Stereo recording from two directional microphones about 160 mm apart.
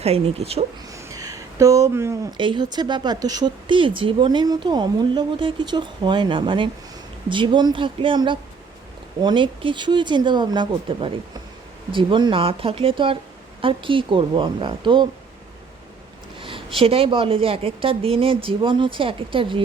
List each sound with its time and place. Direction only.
0.0 s a woman's voice: 40° right (ahead or behind)
0.9 s a sound: 20° right (ahead or behind)
2.4 s a woman's voice: 30° right (ahead or behind)
16.4 s a woman's voice: 35° right (ahead or behind)